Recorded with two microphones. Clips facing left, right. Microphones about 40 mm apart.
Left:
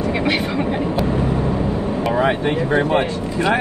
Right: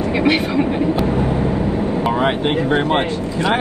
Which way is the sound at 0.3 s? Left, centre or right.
Right.